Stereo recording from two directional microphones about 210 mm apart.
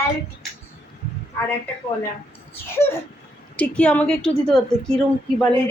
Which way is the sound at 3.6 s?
5° left (ahead or behind).